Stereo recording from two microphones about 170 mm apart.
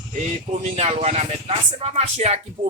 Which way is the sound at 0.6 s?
40° right (ahead or behind).